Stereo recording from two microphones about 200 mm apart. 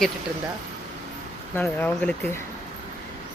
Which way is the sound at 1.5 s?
10° left (ahead or behind).